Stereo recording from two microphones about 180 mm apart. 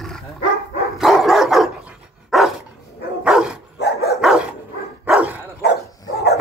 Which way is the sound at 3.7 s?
65° left (ahead or behind).